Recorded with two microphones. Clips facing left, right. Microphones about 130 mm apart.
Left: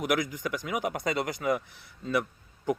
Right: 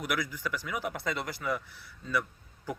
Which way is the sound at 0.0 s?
20° left (ahead or behind).